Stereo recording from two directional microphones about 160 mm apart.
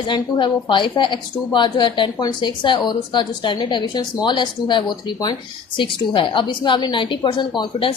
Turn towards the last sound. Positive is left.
turn(degrees=30)  # may be behind; listen again after turning